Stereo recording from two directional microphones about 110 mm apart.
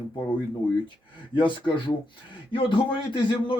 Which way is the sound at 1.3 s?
50° left (ahead or behind).